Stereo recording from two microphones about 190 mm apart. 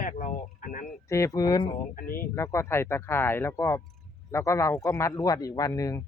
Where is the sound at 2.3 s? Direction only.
15° left (ahead or behind).